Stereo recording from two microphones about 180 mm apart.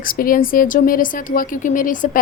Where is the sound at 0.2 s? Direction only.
50° left (ahead or behind).